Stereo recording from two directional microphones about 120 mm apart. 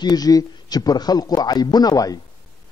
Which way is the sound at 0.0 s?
35° left (ahead or behind).